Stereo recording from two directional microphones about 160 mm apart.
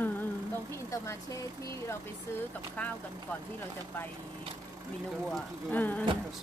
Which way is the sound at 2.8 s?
10° left (ahead or behind).